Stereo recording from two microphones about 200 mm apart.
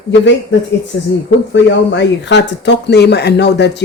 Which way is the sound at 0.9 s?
85° left.